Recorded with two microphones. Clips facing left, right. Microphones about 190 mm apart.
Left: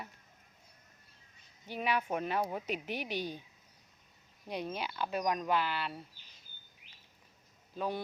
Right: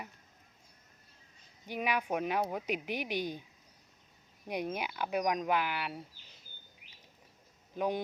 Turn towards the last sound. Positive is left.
turn(degrees=-15)  # may be behind; listen again after turning